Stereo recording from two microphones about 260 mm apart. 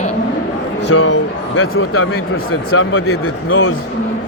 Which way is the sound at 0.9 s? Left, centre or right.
Left.